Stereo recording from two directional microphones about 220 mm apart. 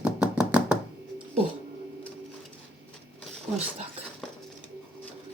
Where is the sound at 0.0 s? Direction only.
5° right (ahead or behind).